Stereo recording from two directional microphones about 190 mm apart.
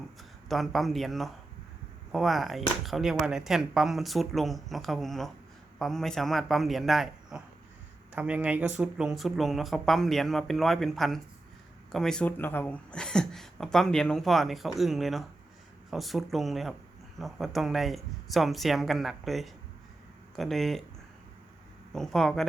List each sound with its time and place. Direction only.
0.2 s speech: centre (ahead or behind)
21.9 s speech: centre (ahead or behind)